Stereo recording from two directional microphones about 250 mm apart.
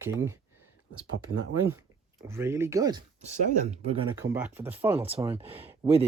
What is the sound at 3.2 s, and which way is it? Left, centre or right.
Speech, right.